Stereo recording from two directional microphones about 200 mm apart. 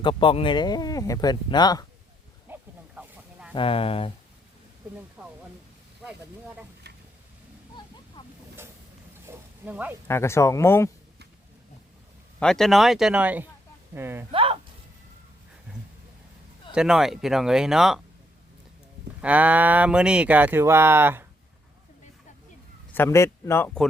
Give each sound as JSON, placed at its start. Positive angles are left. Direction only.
{"t": 0.0, "sound": "speech", "side_deg": 25}
{"t": 2.5, "sound": "a sound", "side_deg": -10}
{"t": 3.5, "sound": "speech", "side_deg": 25}
{"t": 6.8, "sound": "a sound", "side_deg": -55}
{"t": 9.2, "sound": "pig", "side_deg": -10}
{"t": 10.1, "sound": "a man's voice", "side_deg": 15}
{"t": 12.4, "sound": "speech", "side_deg": 0}
{"t": 14.3, "sound": "speech", "side_deg": -25}
{"t": 16.7, "sound": "speech", "side_deg": -5}
{"t": 19.2, "sound": "speech", "side_deg": -5}
{"t": 23.0, "sound": "a man's voice", "side_deg": 15}